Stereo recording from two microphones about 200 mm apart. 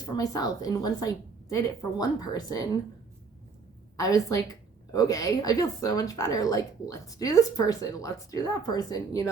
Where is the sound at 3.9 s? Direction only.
15° left (ahead or behind).